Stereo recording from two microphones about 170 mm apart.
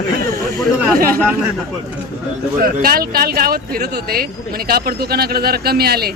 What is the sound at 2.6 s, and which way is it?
Speech, 60° right (ahead or behind).